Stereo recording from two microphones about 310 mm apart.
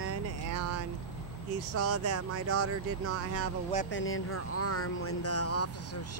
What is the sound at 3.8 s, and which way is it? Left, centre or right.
Speech, left.